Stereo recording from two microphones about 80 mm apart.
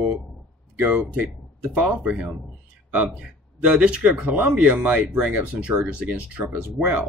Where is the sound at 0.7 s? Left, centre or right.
Centre.